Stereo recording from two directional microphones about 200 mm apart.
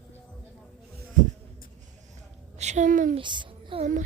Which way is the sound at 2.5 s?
35° right (ahead or behind).